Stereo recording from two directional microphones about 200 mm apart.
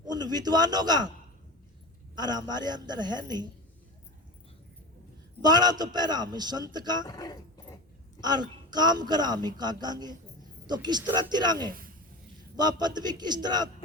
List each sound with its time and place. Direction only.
0.0 s a man's voice: 20° right (ahead or behind)
2.1 s a woman's voice: 20° right (ahead or behind)
5.4 s a woman's voice: 20° right (ahead or behind)
7.0 s speech: 20° left (ahead or behind)
8.2 s a woman's voice: 20° right (ahead or behind)